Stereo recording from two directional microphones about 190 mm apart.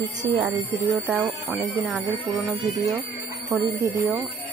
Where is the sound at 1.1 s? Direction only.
Centre (ahead or behind).